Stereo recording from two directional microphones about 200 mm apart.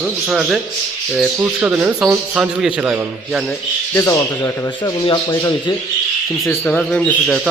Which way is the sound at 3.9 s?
10° left (ahead or behind).